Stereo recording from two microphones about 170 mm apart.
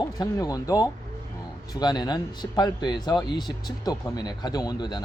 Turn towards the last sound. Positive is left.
turn(degrees=25)  # may be behind; listen again after turning